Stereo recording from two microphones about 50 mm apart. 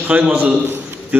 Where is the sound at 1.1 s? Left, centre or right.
Right.